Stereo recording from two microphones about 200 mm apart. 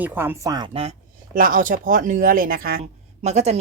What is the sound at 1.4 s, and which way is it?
Speech, 45° right (ahead or behind).